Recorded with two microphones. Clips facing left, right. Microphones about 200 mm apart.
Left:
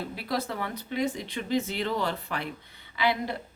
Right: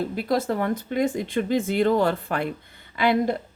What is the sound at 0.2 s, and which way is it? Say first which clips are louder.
A woman's voice: right 8 dB; 45° right (ahead or behind).